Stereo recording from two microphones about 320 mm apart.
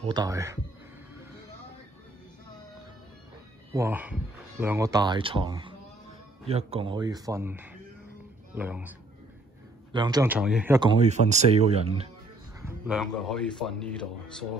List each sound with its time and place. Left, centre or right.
0.0 s speech: centre
3.7 s speech: centre
9.9 s speech: centre
12.6 s speech: centre